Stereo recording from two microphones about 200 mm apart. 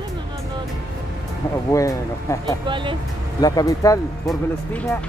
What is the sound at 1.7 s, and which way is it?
Speech, 15° left (ahead or behind).